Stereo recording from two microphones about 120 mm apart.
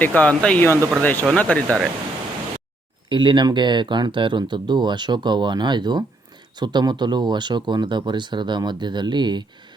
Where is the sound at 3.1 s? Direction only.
40° right (ahead or behind).